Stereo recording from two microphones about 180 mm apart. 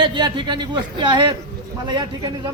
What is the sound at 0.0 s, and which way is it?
A man's voice, 25° right (ahead or behind).